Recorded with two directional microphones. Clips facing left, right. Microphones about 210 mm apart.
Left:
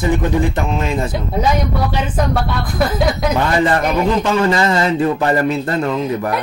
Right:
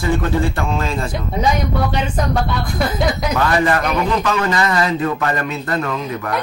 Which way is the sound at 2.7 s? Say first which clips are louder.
Left 3 dB; centre (ahead or behind).